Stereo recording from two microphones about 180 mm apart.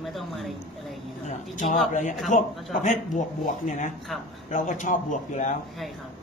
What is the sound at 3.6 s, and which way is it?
Speech, 40° left (ahead or behind).